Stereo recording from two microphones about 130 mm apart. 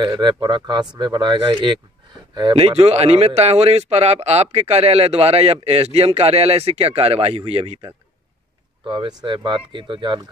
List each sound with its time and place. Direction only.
0.0 s speech: 35° right (ahead or behind)
2.5 s a man's voice: 50° right (ahead or behind)
8.8 s speech: 35° right (ahead or behind)